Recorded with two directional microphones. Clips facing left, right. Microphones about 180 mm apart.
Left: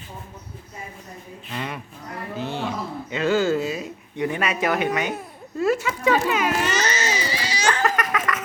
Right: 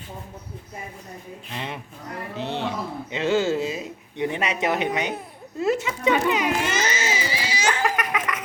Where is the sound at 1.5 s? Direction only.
25° right (ahead or behind).